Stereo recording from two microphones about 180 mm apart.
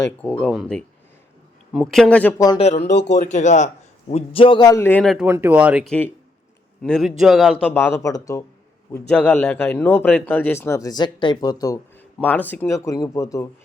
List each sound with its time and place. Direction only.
0.0 s speech: 5° left (ahead or behind)
2.6 s speech: 35° left (ahead or behind)
2.8 s speech: 70° left (ahead or behind)
3.2 s speech: 40° left (ahead or behind)
4.1 s speech: 30° left (ahead or behind); by 5.1 s 10° left (ahead or behind)
5.1 s speech: 10° right (ahead or behind); by 13.5 s 20° left (ahead or behind)